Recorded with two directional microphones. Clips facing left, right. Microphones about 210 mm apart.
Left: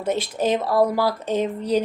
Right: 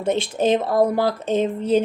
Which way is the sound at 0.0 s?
25° right (ahead or behind).